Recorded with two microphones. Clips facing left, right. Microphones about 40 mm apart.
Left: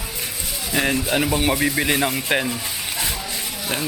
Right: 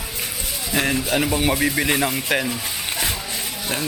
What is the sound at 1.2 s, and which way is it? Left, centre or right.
A man's voice, centre.